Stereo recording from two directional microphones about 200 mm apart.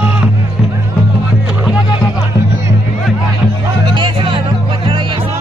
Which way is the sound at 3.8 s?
25° right (ahead or behind).